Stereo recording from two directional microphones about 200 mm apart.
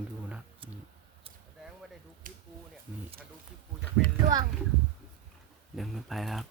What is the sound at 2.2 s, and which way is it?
Speech, 45° right (ahead or behind).